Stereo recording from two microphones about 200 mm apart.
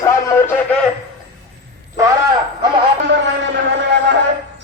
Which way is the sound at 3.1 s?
65° right (ahead or behind).